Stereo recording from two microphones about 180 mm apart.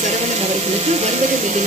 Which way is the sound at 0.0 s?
40° right (ahead or behind).